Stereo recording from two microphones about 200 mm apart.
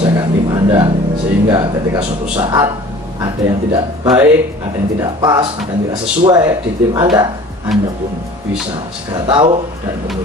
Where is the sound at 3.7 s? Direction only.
15° right (ahead or behind).